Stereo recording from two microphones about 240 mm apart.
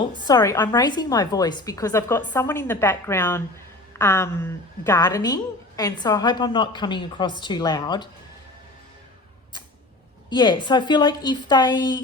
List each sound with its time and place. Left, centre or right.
0.3 s a woman's voice: centre
10.2 s a woman's voice: centre